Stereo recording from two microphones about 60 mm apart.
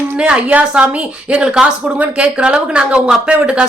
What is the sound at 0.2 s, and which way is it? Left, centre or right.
A woman's voice, centre.